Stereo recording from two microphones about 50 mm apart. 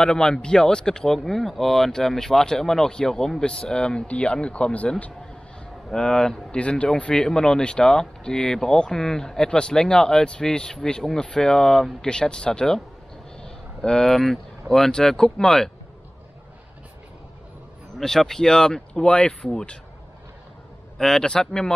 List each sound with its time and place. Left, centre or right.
0.0 s speech: centre
5.9 s speech: centre
13.4 s a sound: centre
14.7 s speech: centre
17.9 s speech: centre
21.0 s speech: centre